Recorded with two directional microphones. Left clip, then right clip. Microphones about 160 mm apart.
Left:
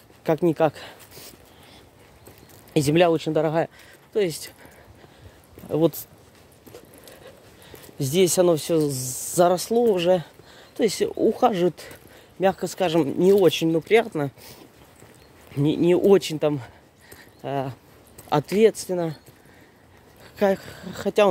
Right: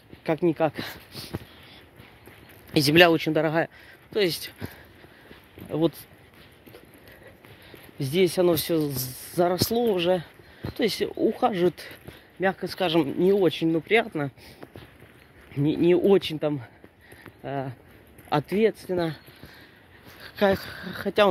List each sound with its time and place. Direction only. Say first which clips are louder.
0.2 s speech: left 3 dB; 40° left (ahead or behind)
2.7 s speech: even; 25° left (ahead or behind)
3.0 s speech: right 2 dB; 5° left (ahead or behind); by 4.6 s 20° left (ahead or behind)
5.7 s speech: left 4 dB; 50° left (ahead or behind)
8.0 s speech: left 3 dB; 40° left (ahead or behind)
8.8 s speech: left 5 dB; 45° left (ahead or behind)
9.7 s speech: left 4 dB; 35° left (ahead or behind)
10.8 s speech: left 3 dB; 25° left (ahead or behind)
12.4 s speech: left 4 dB; 45° left (ahead or behind)
13.7 s speech: left 3 dB; 20° left (ahead or behind)
15.5 s speech: left 1 dB; 25° left (ahead or behind)
20.2 s speech: left 1 dB; 15° left (ahead or behind)